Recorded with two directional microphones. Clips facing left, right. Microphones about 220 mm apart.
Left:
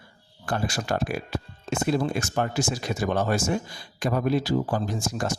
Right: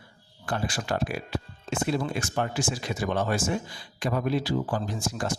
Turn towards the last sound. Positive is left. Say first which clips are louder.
# left 2 dB
turn(degrees=40)  # may be behind; listen again after turning